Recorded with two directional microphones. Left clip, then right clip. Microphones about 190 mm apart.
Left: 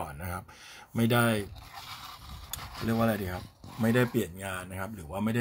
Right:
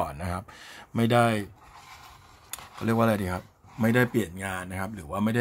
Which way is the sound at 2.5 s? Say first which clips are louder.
Right 5 dB; 35° right (ahead or behind).